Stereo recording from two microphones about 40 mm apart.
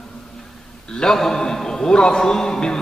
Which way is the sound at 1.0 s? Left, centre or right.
Centre.